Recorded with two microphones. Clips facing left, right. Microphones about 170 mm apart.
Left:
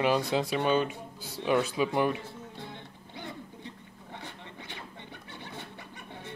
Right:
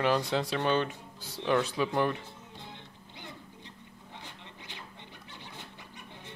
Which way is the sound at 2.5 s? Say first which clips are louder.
Left 4 dB; 55° left (ahead or behind).